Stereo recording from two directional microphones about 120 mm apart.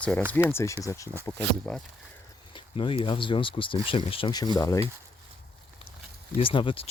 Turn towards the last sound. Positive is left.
turn(degrees=45)  # may be behind; listen again after turning